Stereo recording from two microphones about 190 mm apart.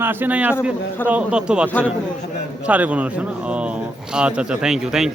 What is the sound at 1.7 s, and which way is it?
Speech, 10° left (ahead or behind).